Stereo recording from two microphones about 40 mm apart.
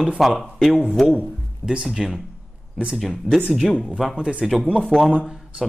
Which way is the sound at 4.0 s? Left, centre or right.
Centre.